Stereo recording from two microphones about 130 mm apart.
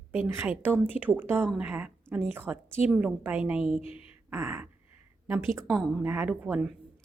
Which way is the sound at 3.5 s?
50° left (ahead or behind).